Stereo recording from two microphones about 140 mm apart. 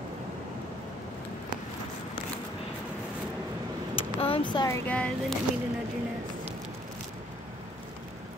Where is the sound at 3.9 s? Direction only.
40° left (ahead or behind).